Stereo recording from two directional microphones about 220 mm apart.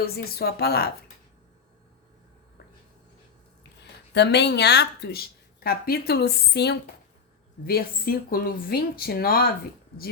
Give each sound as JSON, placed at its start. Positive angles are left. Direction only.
{"t": 0.0, "sound": "speech", "side_deg": 45}
{"t": 4.1, "sound": "speech", "side_deg": 50}